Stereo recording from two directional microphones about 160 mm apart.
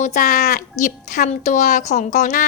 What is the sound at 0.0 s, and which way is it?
A woman's voice, 50° left (ahead or behind).